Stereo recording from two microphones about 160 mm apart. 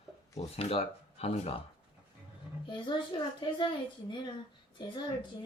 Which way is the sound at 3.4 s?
30° left (ahead or behind).